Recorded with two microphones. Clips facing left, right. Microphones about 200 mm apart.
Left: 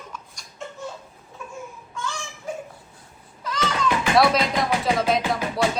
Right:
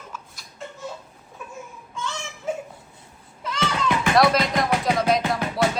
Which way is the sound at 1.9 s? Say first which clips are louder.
Right 1 dB; 20° right (ahead or behind).